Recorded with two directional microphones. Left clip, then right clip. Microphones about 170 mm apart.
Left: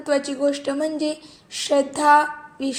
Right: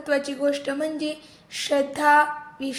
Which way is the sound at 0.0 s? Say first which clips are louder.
Left 2 dB; 15° left (ahead or behind).